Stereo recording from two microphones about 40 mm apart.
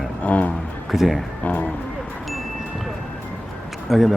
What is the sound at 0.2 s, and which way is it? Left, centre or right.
Speech, left.